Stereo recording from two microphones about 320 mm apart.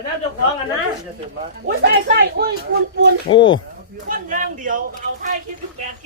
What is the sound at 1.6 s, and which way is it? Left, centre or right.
Speech, right.